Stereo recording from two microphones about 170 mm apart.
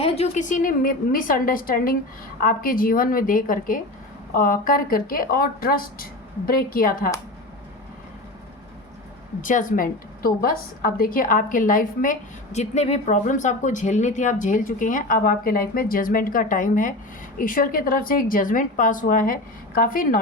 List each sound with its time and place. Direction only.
0.0 s speech: 40° left (ahead or behind); by 7.1 s 60° left (ahead or behind)
9.4 s a woman's voice: 50° left (ahead or behind)